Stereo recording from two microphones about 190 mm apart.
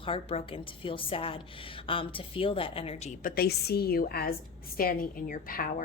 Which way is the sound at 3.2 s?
55° left (ahead or behind).